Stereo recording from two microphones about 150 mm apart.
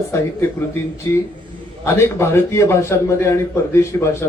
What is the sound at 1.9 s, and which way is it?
A man's voice, 15° left (ahead or behind).